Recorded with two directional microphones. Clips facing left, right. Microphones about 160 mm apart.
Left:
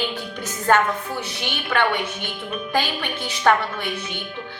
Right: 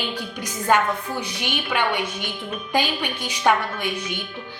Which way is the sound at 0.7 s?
15° right (ahead or behind).